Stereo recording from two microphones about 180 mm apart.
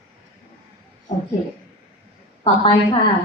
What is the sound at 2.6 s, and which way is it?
Speech, 30° left (ahead or behind).